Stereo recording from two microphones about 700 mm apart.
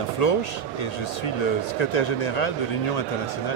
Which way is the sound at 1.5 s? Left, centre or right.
Left.